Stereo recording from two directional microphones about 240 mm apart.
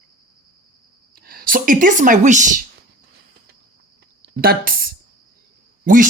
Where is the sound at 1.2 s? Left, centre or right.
Right.